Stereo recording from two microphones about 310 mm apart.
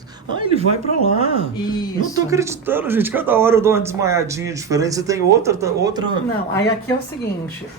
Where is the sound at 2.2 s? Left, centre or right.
Centre.